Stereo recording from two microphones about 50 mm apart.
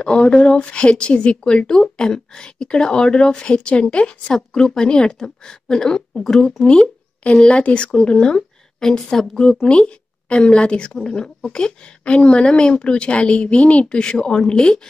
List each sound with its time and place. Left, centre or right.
0.0 s speech: centre
6.6 s a woman's voice: centre